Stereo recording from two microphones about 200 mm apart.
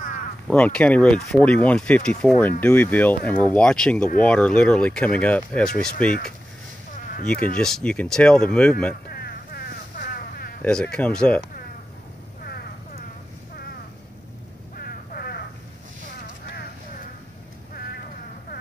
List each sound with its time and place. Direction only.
0.5 s speech: 5° left (ahead or behind)
7.1 s speech: 45° left (ahead or behind)
7.5 s speech: 5° left (ahead or behind)
9.1 s vehicle: 50° left (ahead or behind)
10.6 s speech: 5° left (ahead or behind)
14.8 s a sound: 50° left (ahead or behind)